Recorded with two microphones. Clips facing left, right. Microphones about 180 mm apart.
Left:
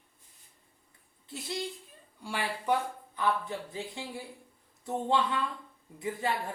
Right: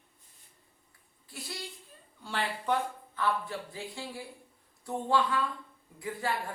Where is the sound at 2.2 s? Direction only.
10° left (ahead or behind).